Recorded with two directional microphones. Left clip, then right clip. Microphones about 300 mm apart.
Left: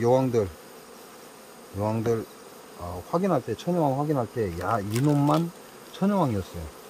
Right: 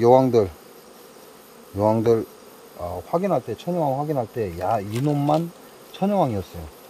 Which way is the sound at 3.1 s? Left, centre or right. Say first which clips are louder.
Right 3 dB; centre.